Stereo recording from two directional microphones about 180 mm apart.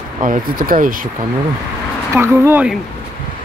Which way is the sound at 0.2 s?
50° right (ahead or behind).